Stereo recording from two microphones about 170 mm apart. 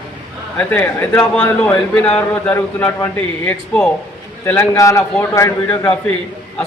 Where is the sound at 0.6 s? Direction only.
10° left (ahead or behind).